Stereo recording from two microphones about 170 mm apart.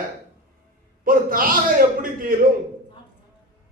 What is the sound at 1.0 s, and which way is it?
A man's voice, 55° right (ahead or behind).